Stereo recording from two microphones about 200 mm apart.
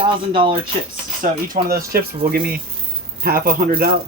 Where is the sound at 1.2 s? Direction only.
45° right (ahead or behind).